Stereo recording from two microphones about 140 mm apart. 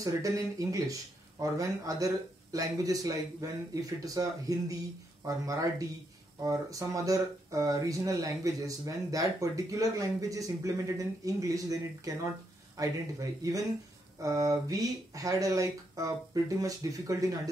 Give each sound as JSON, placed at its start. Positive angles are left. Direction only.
{"t": 0.0, "sound": "speech", "side_deg": -25}